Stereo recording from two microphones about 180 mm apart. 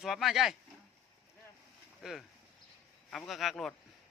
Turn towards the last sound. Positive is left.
turn(degrees=0)  # may be behind; listen again after turning